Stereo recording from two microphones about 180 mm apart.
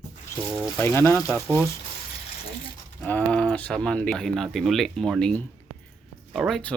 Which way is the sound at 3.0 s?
10° left (ahead or behind).